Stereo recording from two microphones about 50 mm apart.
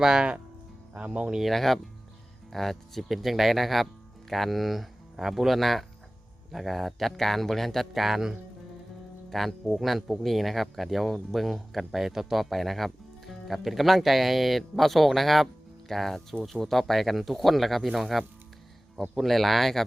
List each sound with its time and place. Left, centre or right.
0.0 s speech: centre
0.9 s speech: right
1.4 s speech: centre
9.3 s speech: centre